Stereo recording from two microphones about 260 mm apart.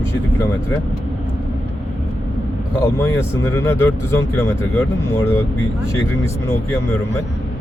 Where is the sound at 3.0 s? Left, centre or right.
Centre.